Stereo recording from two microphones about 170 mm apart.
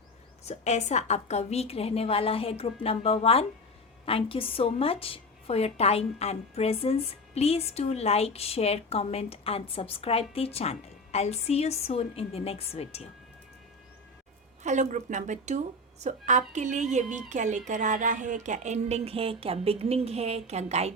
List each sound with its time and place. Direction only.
0.4 s a woman's voice: 40° left (ahead or behind)
14.6 s speech: 45° right (ahead or behind)